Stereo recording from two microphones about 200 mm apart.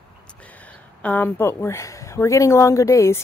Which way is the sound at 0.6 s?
10° left (ahead or behind).